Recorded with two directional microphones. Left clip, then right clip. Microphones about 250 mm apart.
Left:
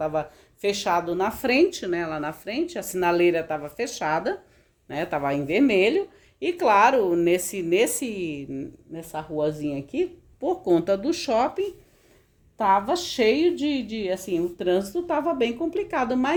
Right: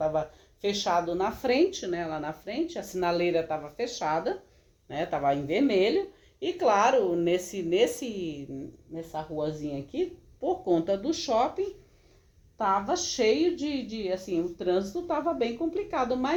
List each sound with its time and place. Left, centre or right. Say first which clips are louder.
0.0 s speech: left 2 dB; left